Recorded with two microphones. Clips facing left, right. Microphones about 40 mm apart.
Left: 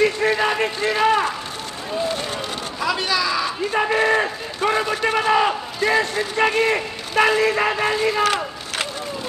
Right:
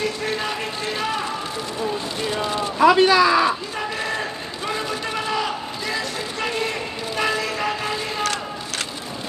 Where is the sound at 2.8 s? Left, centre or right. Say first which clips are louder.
Right 8 dB; right.